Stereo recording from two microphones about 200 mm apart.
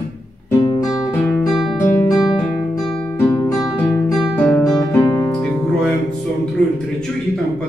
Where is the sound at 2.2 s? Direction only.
Centre (ahead or behind).